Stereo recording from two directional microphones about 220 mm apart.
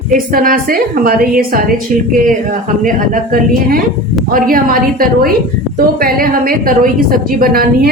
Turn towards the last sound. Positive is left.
turn(degrees=-40)  # may be behind; listen again after turning